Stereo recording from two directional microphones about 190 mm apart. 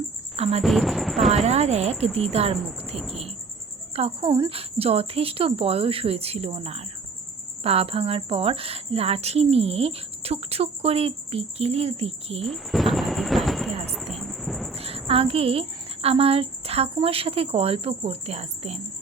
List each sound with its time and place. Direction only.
0.3 s speech: 30° right (ahead or behind)
0.6 s speech: centre (ahead or behind)
1.5 s speech: 35° right (ahead or behind)
2.9 s speech: centre (ahead or behind)
3.9 s speech: 30° right (ahead or behind)
12.5 s speech: centre (ahead or behind)
13.9 s music: centre (ahead or behind)
14.8 s a woman's voice: 30° right (ahead or behind)